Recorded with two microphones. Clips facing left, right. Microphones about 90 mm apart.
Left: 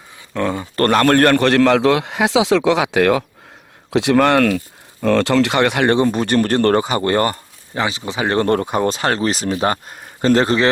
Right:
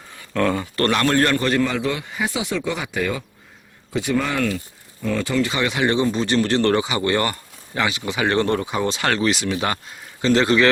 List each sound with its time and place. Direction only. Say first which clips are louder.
0.3 s speech: even; 20° left (ahead or behind)
0.8 s a man's voice: left 6 dB; 45° left (ahead or behind); by 4.5 s 75° left (ahead or behind)
5.0 s speech: left 7 dB; 90° left; by 8.4 s 35° left (ahead or behind)
8.4 s speech: left 5 dB; 50° left (ahead or behind)
9.0 s speech: left 2 dB; 35° left (ahead or behind)